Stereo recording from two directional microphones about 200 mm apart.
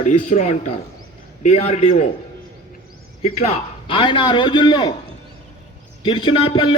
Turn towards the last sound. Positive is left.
turn(degrees=25)  # may be behind; listen again after turning